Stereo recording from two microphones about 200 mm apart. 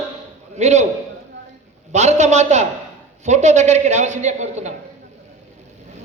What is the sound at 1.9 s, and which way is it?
A man's voice, 35° right (ahead or behind).